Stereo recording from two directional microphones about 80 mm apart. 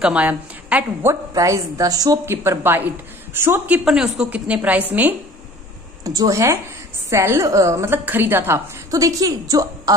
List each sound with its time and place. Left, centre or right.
0.0 s a woman's voice: centre
1.3 s a woman's voice: right
2.2 s a woman's voice: right
3.8 s a woman's voice: centre
6.0 s a woman's voice: right
8.9 s a woman's voice: right